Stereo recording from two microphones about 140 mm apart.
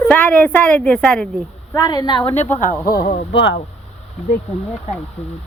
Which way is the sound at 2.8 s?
90° left.